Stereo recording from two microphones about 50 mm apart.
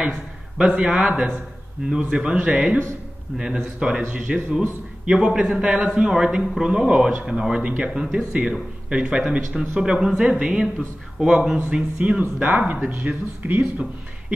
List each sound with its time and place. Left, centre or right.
0.0 s a man's voice: right
12.2 s speech: right